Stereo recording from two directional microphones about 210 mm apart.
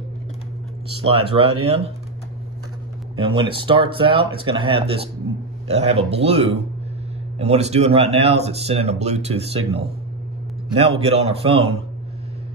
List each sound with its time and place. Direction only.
1.0 s speech: 25° right (ahead or behind)
3.2 s speech: 25° right (ahead or behind)